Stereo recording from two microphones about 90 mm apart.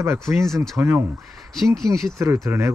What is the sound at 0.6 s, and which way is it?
Speech, 30° right (ahead or behind).